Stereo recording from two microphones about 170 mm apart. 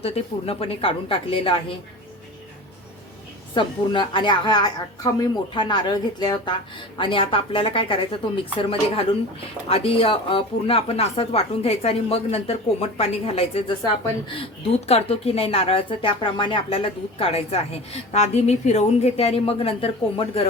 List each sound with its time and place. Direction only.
0.0 s speech: 35° left (ahead or behind)
3.5 s a woman's voice: 30° left (ahead or behind)
14.8 s speech: 35° left (ahead or behind)